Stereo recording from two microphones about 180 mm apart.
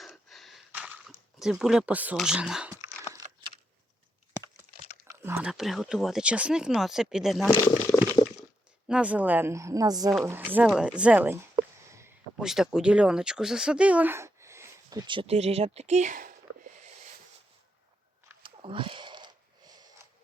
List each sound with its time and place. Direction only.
0.0 s gasp: centre (ahead or behind)
0.7 s a sound: 10° right (ahead or behind)
1.4 s speech: 5° right (ahead or behind)
3.2 s a sound: 40° right (ahead or behind)
5.0 s speech: 15° right (ahead or behind)
8.0 s a sound: 10° left (ahead or behind)
8.9 s a woman's voice: 5° right (ahead or behind)
10.7 s a woman's voice: 5° right (ahead or behind)
11.5 s a sound: 15° right (ahead or behind)
12.4 s speech: 5° right (ahead or behind); by 16.3 s 45° right (ahead or behind)
18.4 s sniff: 30° right (ahead or behind)
20.0 s creak: 15° right (ahead or behind)